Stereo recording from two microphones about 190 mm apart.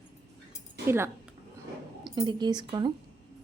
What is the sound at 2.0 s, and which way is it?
Speech, 25° right (ahead or behind).